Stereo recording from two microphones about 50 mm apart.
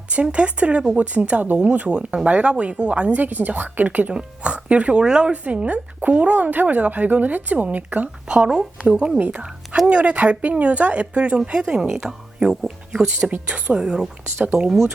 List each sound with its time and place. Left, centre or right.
0.1 s a woman's voice: right
3.1 s a woman's voice: right
4.1 s speech: centre
5.3 s a woman's voice: right
8.3 s a woman's voice: centre